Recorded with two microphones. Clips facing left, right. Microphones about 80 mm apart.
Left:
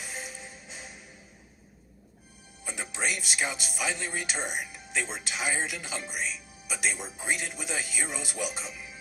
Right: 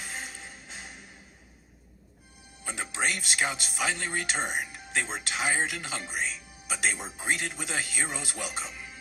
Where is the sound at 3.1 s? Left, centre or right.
Right.